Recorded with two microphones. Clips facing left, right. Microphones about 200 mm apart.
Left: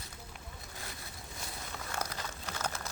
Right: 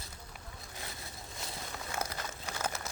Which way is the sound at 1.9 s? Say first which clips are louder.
Right 1 dB; 10° right (ahead or behind).